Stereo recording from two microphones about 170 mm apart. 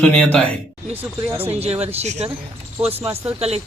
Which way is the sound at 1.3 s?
35° right (ahead or behind).